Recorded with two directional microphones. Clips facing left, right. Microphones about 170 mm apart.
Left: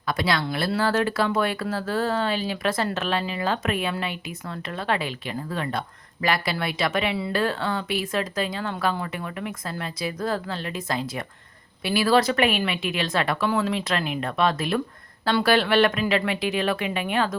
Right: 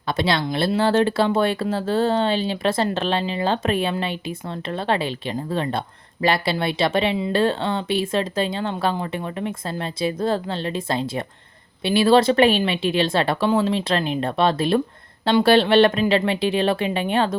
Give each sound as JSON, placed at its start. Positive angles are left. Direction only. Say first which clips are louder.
{"t": 0.1, "sound": "speech", "louder": "right 3 dB", "side_deg": -25}